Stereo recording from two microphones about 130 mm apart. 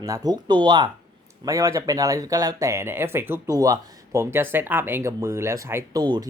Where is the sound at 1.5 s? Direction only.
25° right (ahead or behind).